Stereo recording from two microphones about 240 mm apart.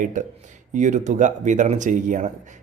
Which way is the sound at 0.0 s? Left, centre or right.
Right.